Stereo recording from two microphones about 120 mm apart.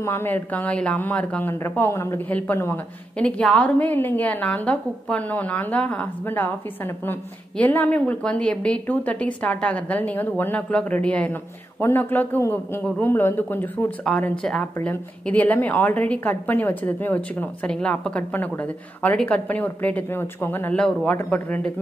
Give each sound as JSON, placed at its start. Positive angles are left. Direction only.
{"t": 0.0, "sound": "a woman's voice", "side_deg": 20}
{"t": 2.5, "sound": "a man's voice", "side_deg": 25}
{"t": 3.2, "sound": "a woman's voice", "side_deg": 10}